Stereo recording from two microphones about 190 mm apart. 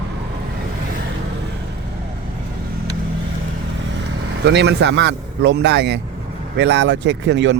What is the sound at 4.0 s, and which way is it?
A man's voice, 65° right (ahead or behind).